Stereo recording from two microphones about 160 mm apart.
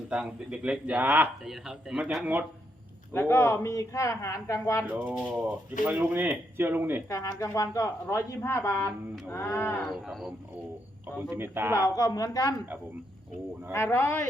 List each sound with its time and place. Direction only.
0.1 s a man's voice: 5° right (ahead or behind)
3.1 s speech: 15° left (ahead or behind)
4.9 s a man's voice: 10° right (ahead or behind)
7.1 s speech: 20° left (ahead or behind)
10.1 s speech: centre (ahead or behind)
11.2 s a man's voice: 15° right (ahead or behind)
11.7 s speech: 20° left (ahead or behind)
13.7 s speech: 15° left (ahead or behind)